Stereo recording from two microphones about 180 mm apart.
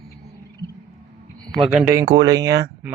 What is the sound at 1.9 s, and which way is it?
Speech, 20° right (ahead or behind).